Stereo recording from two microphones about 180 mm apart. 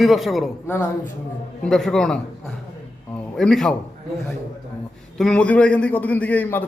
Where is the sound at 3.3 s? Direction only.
Centre (ahead or behind).